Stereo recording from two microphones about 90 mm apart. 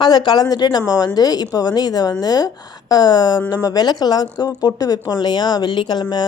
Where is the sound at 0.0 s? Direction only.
55° left (ahead or behind).